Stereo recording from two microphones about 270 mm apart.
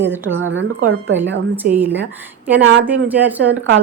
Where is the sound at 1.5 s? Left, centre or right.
Centre.